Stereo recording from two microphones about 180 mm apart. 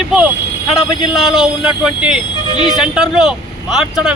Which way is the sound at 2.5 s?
25° left (ahead or behind).